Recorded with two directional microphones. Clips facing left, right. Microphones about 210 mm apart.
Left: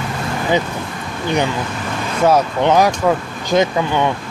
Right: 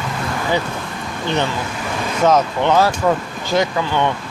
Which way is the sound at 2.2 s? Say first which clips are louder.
Left 1 dB; 15° left (ahead or behind).